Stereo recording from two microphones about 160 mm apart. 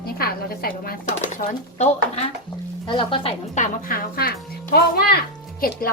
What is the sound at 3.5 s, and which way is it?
A child's voice, 60° left (ahead or behind).